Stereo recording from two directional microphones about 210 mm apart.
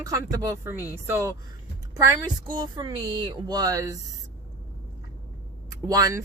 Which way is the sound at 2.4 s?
20° right (ahead or behind).